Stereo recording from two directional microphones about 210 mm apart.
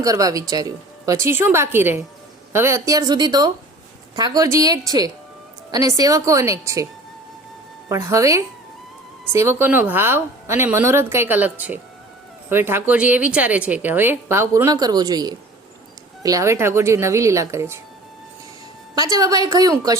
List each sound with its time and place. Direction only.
0.0 s a woman's voice: 15° right (ahead or behind)
7.9 s a woman's voice: 15° right (ahead or behind)
18.9 s a woman's voice: 15° right (ahead or behind)